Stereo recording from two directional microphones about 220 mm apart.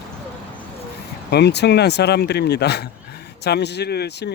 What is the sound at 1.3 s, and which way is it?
Speech, 50° left (ahead or behind).